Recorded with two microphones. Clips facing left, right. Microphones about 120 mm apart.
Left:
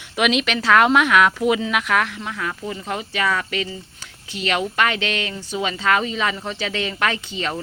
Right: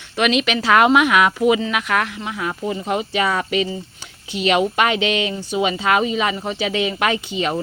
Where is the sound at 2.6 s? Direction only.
20° right (ahead or behind).